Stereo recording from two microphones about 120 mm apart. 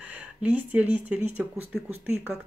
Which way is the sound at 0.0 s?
15° right (ahead or behind).